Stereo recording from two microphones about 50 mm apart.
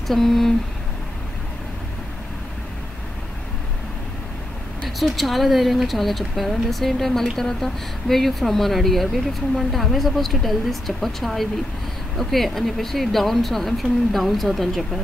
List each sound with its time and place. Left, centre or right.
0.1 s speech: centre
4.8 s a woman's voice: centre